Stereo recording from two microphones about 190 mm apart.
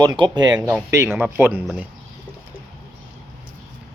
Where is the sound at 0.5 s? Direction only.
10° right (ahead or behind).